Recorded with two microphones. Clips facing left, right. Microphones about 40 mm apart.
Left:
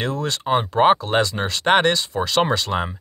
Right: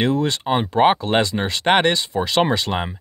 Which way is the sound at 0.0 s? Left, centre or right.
Centre.